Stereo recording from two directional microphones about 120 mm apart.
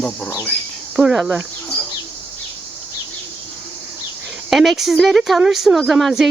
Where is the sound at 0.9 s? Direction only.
5° right (ahead or behind).